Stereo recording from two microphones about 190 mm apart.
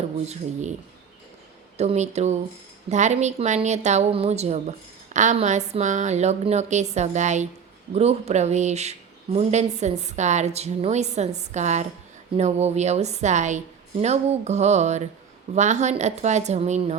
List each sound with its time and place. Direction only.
1.8 s speech: 35° right (ahead or behind)